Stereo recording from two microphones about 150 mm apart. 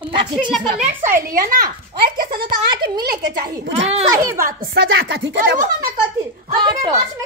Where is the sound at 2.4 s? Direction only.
30° right (ahead or behind).